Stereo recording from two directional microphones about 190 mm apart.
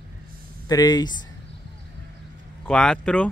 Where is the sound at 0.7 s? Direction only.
20° left (ahead or behind).